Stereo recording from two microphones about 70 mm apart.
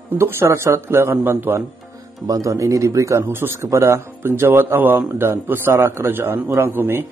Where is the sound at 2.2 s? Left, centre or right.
Right.